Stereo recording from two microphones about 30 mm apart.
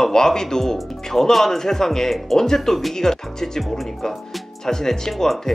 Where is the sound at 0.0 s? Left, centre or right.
Centre.